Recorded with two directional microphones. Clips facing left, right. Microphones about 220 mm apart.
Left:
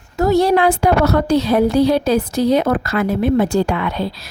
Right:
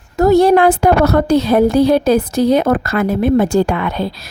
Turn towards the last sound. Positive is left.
turn(degrees=-50)  # may be behind; listen again after turning